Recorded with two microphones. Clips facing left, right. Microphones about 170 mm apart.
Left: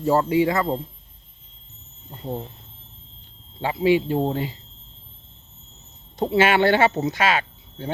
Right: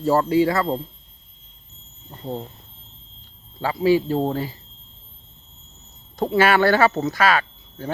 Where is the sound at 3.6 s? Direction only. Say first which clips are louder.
Right 1 dB; 20° left (ahead or behind).